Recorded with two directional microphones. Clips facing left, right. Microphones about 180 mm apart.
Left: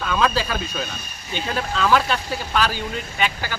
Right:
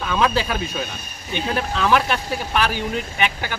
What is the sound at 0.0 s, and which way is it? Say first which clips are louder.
Speech: right 1 dB; 20° right (ahead or behind).